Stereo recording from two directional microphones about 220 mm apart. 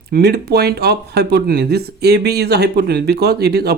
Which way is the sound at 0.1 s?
45° right (ahead or behind).